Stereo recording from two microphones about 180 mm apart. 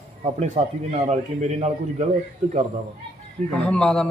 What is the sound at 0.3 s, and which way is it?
A man's voice, 45° right (ahead or behind).